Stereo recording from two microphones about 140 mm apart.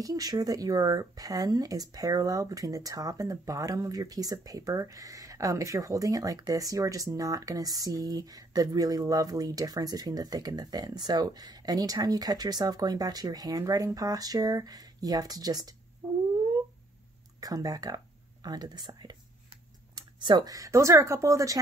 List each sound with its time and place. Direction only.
0.0 s speech: 25° right (ahead or behind)
17.4 s speech: 25° right (ahead or behind)